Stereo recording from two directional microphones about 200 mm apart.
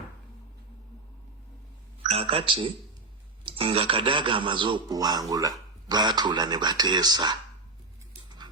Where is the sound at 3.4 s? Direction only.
30° right (ahead or behind).